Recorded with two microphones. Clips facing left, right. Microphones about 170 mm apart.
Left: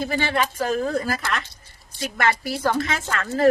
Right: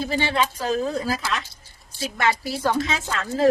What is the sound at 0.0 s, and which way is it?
Speech, 50° left (ahead or behind).